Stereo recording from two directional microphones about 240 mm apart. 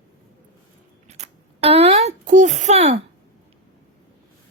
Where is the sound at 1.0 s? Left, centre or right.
Right.